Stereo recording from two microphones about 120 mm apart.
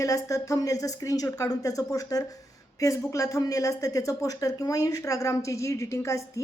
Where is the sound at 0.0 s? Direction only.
30° left (ahead or behind).